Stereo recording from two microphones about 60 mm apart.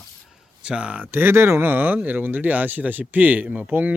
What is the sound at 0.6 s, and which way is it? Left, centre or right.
Speech, centre.